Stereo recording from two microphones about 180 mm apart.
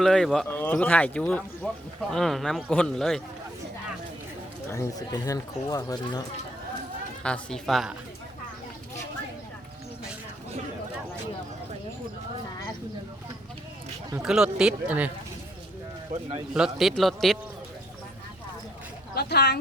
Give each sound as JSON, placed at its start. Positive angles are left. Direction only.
{"t": 0.0, "sound": "speech", "side_deg": 0}
{"t": 4.7, "sound": "speech", "side_deg": 15}
{"t": 7.2, "sound": "speech", "side_deg": 5}
{"t": 14.2, "sound": "speech", "side_deg": -5}
{"t": 16.6, "sound": "speech", "side_deg": 0}
{"t": 19.1, "sound": "speech", "side_deg": 65}